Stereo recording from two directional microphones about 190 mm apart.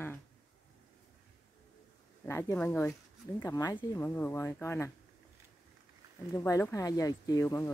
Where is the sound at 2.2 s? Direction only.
10° left (ahead or behind).